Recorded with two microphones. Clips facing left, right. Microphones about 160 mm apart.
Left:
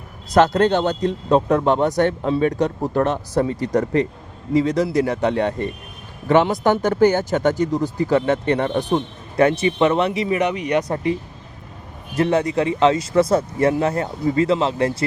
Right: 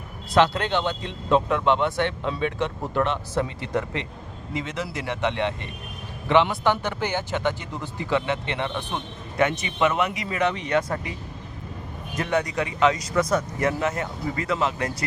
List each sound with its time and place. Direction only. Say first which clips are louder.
0.3 s speech: left 6 dB; 45° left (ahead or behind)
10.2 s speech: left 5 dB; 20° left (ahead or behind)
12.1 s speech: left 7 dB; 30° left (ahead or behind)